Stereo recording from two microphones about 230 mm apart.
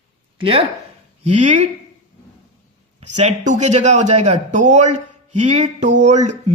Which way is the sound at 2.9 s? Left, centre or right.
Right.